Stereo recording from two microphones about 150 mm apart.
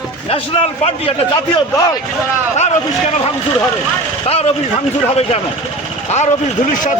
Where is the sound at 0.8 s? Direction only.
40° left (ahead or behind).